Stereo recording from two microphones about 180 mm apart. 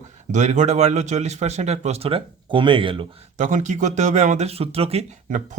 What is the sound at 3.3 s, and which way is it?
Speech, 45° right (ahead or behind).